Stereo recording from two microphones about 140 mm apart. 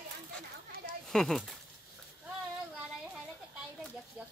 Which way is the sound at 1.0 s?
Centre (ahead or behind).